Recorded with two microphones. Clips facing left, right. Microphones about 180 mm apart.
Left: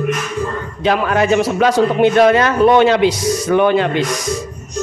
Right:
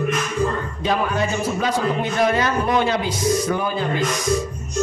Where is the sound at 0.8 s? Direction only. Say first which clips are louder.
Left 7 dB; 80° left.